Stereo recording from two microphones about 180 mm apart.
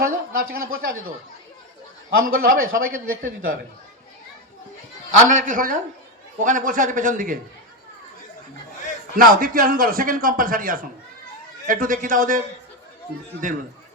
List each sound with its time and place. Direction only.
0.0 s a man's voice: 55° right (ahead or behind)
5.4 s a man's voice: 50° right (ahead or behind)
9.1 s a man's voice: 50° right (ahead or behind)
13.4 s a man's voice: 50° right (ahead or behind)